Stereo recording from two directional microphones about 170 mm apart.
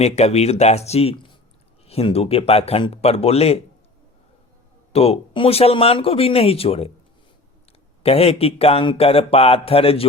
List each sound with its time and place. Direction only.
0.0 s speech: 40° left (ahead or behind)
4.9 s speech: 35° left (ahead or behind)
8.0 s speech: 35° left (ahead or behind)